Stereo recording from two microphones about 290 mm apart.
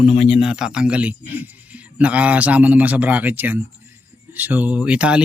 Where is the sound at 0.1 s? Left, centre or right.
Centre.